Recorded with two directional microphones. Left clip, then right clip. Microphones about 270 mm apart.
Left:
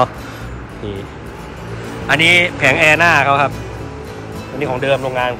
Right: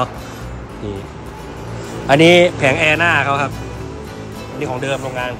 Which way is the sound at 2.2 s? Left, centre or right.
Right.